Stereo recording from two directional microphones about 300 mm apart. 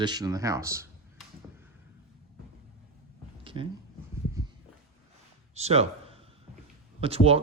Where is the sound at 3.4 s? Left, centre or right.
Centre.